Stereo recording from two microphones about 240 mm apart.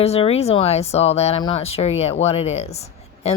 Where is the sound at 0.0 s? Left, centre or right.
Left.